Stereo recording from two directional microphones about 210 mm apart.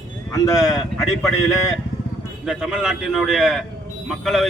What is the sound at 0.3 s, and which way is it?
Speech, 15° left (ahead or behind).